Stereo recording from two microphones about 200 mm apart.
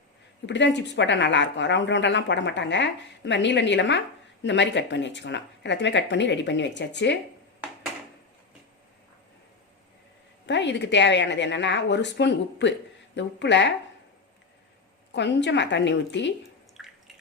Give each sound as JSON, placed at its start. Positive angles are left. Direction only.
{"t": 0.4, "sound": "a woman's voice", "side_deg": 60}
{"t": 10.4, "sound": "a woman's voice", "side_deg": 60}
{"t": 15.1, "sound": "a woman's voice", "side_deg": 60}
{"t": 16.8, "sound": "drip", "side_deg": 0}